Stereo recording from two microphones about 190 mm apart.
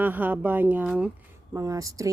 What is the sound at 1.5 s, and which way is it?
Speech, 15° right (ahead or behind).